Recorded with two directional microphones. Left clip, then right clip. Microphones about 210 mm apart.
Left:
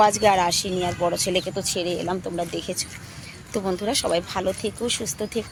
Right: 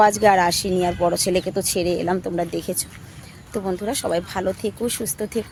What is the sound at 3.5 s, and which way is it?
Speech, 10° right (ahead or behind).